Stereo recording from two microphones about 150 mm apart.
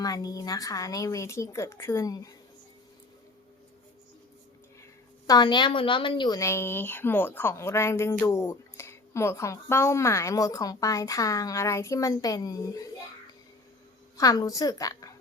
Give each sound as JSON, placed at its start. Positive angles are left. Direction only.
{"t": 0.0, "sound": "a woman's voice", "side_deg": 25}
{"t": 4.8, "sound": "a woman's voice", "side_deg": 25}
{"t": 14.2, "sound": "a woman's voice", "side_deg": 25}